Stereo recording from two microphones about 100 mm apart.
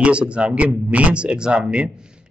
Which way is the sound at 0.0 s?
10° right (ahead or behind).